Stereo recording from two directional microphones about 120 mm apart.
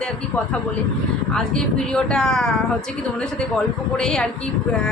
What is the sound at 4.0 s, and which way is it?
Speech, 5° left (ahead or behind).